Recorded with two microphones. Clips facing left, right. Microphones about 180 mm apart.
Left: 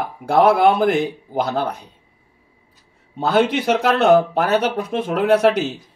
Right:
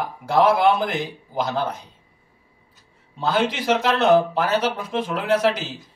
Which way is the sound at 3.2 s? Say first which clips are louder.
Left 5 dB; 60° left (ahead or behind).